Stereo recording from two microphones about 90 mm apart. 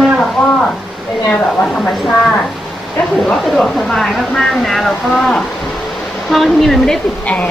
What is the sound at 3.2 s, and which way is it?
Speech, 5° left (ahead or behind).